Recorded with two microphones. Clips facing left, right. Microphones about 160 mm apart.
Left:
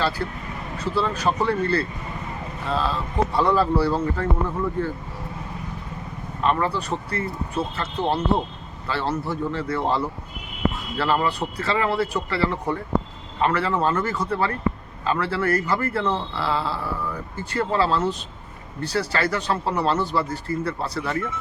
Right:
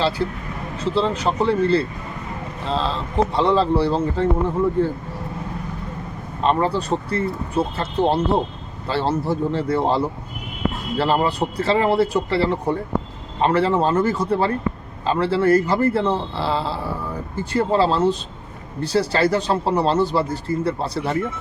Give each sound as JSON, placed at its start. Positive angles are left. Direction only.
{"t": 0.2, "sound": "speech", "side_deg": -25}
{"t": 6.4, "sound": "speech", "side_deg": -30}